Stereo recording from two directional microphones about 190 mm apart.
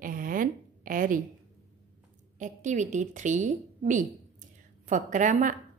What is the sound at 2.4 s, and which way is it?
A woman's voice, 40° right (ahead or behind).